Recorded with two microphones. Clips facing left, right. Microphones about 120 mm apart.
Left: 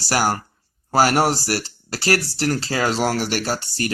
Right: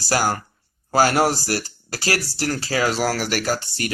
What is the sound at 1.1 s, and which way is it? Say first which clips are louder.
Speech: even; 25° left (ahead or behind).